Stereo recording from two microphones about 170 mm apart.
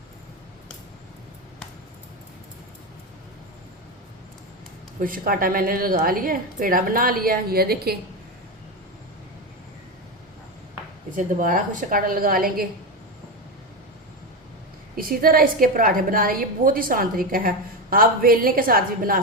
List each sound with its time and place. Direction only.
4.9 s a woman's voice: 55° right (ahead or behind)
11.2 s a woman's voice: 50° right (ahead or behind)
14.9 s a woman's voice: 60° right (ahead or behind)